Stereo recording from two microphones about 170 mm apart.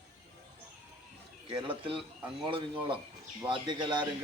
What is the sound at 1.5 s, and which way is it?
A man's voice, 30° right (ahead or behind).